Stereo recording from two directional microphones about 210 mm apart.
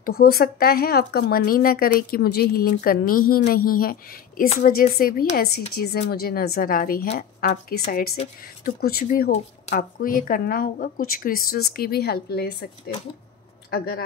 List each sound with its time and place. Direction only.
0.0 s speech: 45° left (ahead or behind)